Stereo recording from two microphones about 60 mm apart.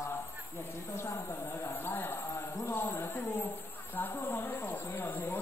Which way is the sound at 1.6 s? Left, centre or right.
Left.